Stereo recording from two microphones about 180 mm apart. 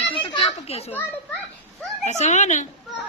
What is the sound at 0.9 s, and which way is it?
Speech, 10° left (ahead or behind).